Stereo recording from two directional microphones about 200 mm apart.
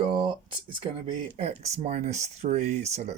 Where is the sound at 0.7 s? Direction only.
25° right (ahead or behind).